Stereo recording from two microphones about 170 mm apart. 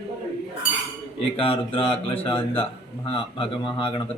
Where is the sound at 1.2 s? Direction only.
30° left (ahead or behind).